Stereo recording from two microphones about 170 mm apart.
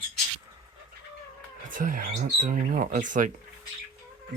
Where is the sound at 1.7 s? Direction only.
55° right (ahead or behind).